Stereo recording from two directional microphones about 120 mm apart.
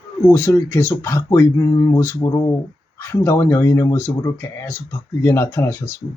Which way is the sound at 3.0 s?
20° left (ahead or behind).